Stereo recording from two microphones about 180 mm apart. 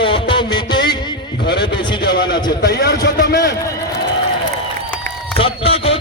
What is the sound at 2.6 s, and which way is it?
Speech, 70° left (ahead or behind).